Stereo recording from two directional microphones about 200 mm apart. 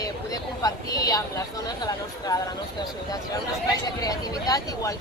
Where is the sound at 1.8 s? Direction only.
20° left (ahead or behind).